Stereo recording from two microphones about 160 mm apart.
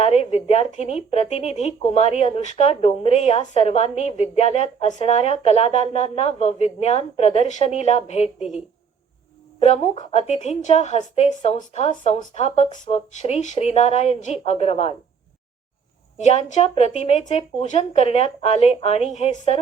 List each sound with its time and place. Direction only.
0.0 s a sound: 40° left (ahead or behind)
0.7 s speech: 40° left (ahead or behind)
9.6 s speech: 45° left (ahead or behind)
16.1 s speech: 45° left (ahead or behind)